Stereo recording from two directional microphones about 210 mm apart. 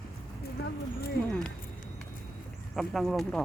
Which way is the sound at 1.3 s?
5° left (ahead or behind).